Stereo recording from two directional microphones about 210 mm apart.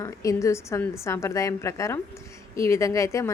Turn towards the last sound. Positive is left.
turn(degrees=15)  # may be behind; listen again after turning